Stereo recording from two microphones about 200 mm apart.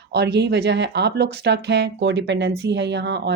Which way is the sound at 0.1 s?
55° right (ahead or behind).